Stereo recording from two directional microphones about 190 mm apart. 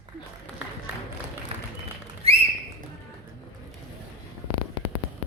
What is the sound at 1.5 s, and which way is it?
Applause, 30° right (ahead or behind).